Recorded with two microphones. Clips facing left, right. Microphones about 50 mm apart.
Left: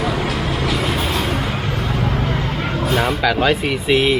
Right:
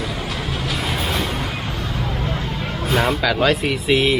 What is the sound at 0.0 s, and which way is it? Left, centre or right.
Vehicle, left.